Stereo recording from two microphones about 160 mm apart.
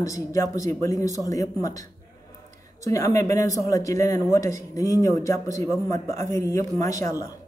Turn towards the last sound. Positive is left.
turn(degrees=20)  # may be behind; listen again after turning